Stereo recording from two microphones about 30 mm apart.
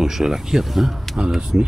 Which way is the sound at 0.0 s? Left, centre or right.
Centre.